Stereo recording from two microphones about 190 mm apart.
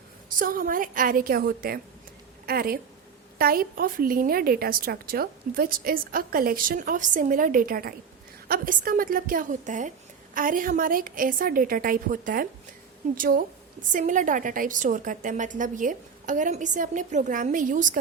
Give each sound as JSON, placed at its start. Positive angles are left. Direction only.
{"t": 0.3, "sound": "a woman's voice", "side_deg": -45}